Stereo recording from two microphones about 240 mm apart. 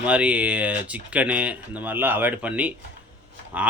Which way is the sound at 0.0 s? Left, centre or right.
Centre.